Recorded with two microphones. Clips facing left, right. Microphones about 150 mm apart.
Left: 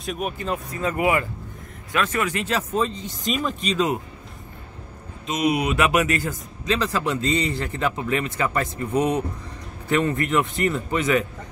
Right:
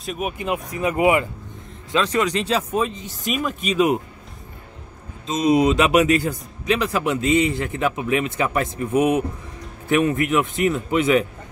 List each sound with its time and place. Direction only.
0.0 s speech: centre (ahead or behind)
0.4 s speech: 15° right (ahead or behind)
5.2 s a man's voice: 30° right (ahead or behind)